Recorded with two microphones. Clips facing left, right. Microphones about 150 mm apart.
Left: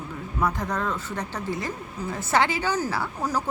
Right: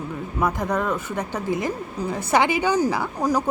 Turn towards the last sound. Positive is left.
turn(degrees=-15)  # may be behind; listen again after turning